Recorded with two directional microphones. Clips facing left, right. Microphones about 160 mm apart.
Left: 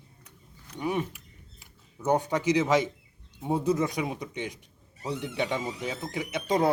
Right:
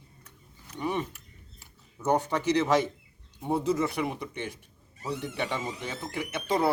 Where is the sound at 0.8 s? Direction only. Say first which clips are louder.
Left 1 dB; 10° left (ahead or behind).